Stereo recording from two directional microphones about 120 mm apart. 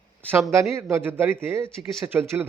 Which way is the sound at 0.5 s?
20° right (ahead or behind).